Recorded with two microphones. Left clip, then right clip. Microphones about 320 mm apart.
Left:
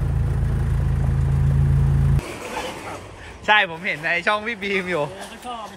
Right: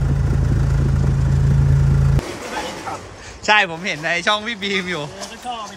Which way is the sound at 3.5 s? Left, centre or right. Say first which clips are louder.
Right 2 dB; centre.